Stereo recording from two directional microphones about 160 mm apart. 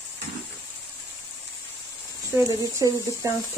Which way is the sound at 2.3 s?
20° right (ahead or behind).